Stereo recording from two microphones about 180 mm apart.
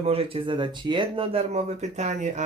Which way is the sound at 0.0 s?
30° right (ahead or behind).